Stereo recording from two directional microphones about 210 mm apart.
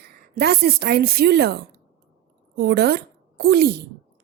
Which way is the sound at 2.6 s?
50° right (ahead or behind).